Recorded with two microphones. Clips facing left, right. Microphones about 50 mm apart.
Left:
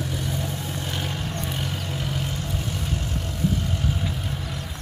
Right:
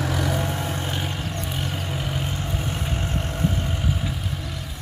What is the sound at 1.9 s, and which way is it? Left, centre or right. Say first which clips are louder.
Vehicle: right 1 dB; centre.